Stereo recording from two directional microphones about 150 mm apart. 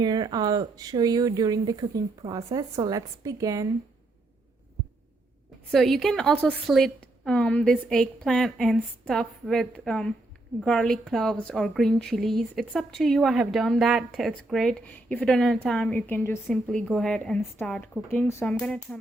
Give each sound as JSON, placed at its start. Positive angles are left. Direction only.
{"t": 0.0, "sound": "speech", "side_deg": -30}
{"t": 5.7, "sound": "a woman's voice", "side_deg": 0}
{"t": 16.5, "sound": "a woman's voice", "side_deg": 0}